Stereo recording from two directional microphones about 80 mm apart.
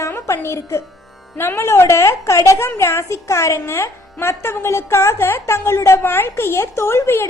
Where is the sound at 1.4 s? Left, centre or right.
Left.